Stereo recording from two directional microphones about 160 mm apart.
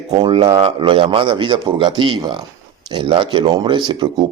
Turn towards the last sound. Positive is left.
turn(degrees=-30)  # may be behind; listen again after turning